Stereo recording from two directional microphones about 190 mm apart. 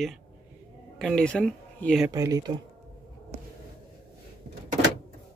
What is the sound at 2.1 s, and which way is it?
Speech, 15° right (ahead or behind).